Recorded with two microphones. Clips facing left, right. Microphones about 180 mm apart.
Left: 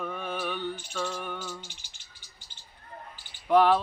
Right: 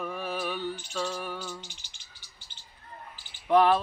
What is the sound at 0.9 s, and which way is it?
Music, 15° right (ahead or behind).